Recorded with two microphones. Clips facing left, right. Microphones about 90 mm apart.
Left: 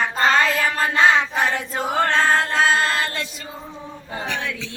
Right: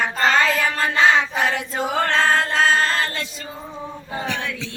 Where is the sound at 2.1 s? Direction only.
5° left (ahead or behind).